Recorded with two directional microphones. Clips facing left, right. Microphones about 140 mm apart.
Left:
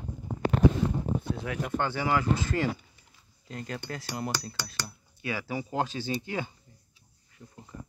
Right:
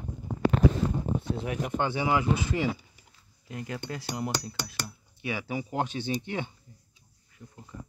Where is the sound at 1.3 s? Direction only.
20° right (ahead or behind).